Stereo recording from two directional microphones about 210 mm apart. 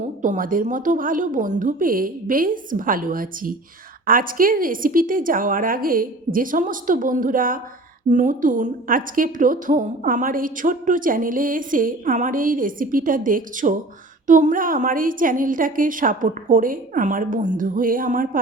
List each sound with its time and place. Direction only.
0.2 s a woman's voice: 40° right (ahead or behind)